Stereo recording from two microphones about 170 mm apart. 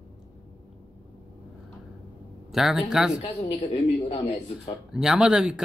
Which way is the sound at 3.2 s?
35° left (ahead or behind).